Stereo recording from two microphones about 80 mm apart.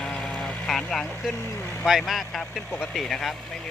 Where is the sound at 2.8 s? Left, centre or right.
Centre.